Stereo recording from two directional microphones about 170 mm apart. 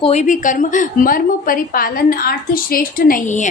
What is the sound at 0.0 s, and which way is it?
A woman's voice, 40° left (ahead or behind).